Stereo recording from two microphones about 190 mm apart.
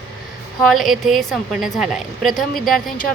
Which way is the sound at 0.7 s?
Centre (ahead or behind).